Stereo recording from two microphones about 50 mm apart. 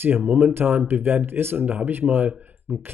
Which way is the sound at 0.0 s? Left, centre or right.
Right.